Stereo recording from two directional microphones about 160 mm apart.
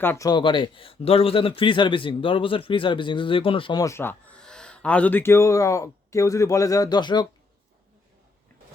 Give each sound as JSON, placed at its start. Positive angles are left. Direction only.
{"t": 0.0, "sound": "speech", "side_deg": 15}
{"t": 0.3, "sound": "a man's voice", "side_deg": 30}